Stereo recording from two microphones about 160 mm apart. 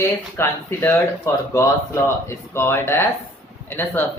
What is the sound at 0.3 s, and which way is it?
Speech, 15° left (ahead or behind).